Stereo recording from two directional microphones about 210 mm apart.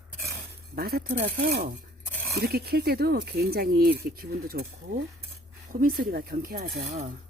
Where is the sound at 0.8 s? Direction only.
45° right (ahead or behind).